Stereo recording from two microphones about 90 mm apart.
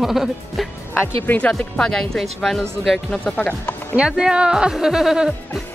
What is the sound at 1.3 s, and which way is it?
Speech, 15° left (ahead or behind).